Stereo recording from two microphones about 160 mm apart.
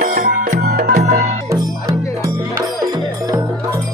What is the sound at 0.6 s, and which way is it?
Music, 65° right (ahead or behind).